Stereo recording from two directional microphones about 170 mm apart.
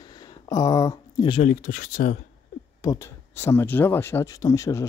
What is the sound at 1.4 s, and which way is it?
Speech, 50° left (ahead or behind).